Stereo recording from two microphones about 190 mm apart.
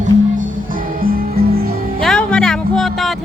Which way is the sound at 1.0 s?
50° right (ahead or behind).